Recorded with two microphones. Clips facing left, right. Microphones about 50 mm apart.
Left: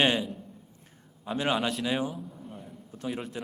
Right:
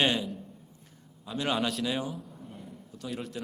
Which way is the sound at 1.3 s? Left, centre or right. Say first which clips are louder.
Left 4 dB; left.